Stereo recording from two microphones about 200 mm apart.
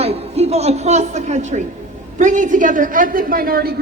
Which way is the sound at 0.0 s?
30° right (ahead or behind).